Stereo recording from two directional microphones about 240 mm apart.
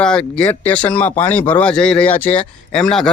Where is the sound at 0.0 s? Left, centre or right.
Centre.